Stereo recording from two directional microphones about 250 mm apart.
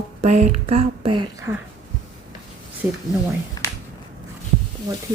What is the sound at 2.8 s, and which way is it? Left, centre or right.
Speech, centre.